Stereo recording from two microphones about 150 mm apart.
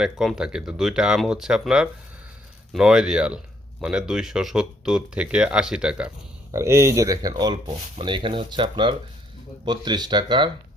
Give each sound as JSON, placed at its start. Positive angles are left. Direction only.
{"t": 0.0, "sound": "speech", "side_deg": 0}
{"t": 6.5, "sound": "speech", "side_deg": -20}